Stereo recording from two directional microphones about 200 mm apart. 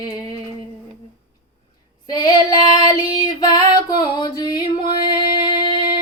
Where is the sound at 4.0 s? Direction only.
20° left (ahead or behind).